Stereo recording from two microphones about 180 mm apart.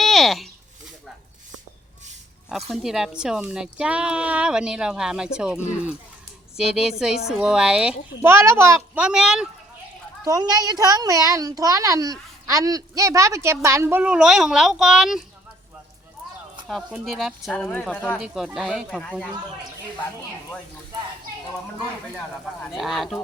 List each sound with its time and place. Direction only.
0.0 s a sound: centre (ahead or behind)
2.5 s speech: centre (ahead or behind)
6.6 s speech: 5° right (ahead or behind)
10.2 s a woman's voice: 20° right (ahead or behind); by 15.2 s centre (ahead or behind)
16.6 s speech: centre (ahead or behind)
18.2 s speech: 5° right (ahead or behind)
22.4 s speech: centre (ahead or behind)